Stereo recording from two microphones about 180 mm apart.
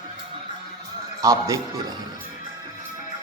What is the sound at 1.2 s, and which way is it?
Speech, 20° right (ahead or behind).